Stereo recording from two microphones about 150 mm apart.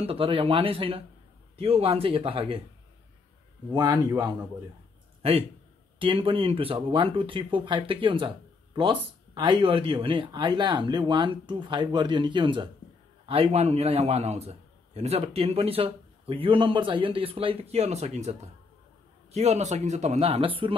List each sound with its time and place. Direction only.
0.0 s speech: 40° right (ahead or behind)
3.7 s speech: 25° right (ahead or behind)
5.9 s speech: 35° right (ahead or behind)